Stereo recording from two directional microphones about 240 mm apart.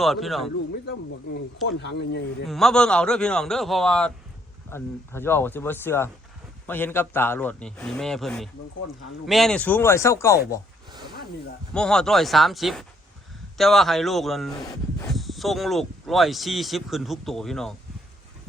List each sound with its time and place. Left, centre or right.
0.0 s speech: centre
1.6 s speech: left
2.5 s a man's voice: centre
11.7 s speech: centre